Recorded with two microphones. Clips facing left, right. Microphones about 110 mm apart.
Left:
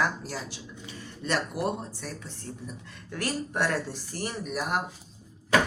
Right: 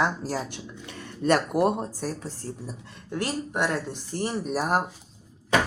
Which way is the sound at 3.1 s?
25° right (ahead or behind).